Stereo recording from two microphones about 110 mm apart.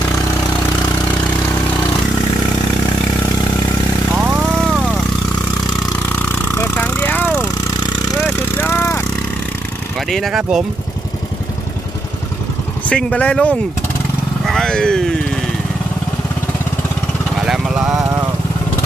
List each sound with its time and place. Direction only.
4.2 s vehicle: 5° right (ahead or behind)
6.0 s a sound: 20° left (ahead or behind)
6.9 s vehicle: 15° left (ahead or behind)
8.5 s vehicle: 20° left (ahead or behind)
9.9 s speech: 5° left (ahead or behind)
12.8 s speech: 10° left (ahead or behind)
17.5 s speech: 5° right (ahead or behind)